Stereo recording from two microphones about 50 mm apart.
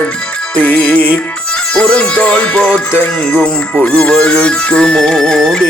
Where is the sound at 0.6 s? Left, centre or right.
Left.